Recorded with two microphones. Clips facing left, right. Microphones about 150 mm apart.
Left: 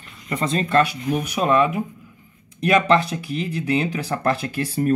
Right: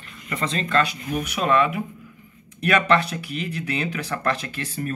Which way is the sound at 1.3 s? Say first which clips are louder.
Left 1 dB; 25° left (ahead or behind).